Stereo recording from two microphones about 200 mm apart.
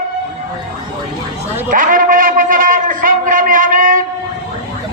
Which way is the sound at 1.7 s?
45° right (ahead or behind).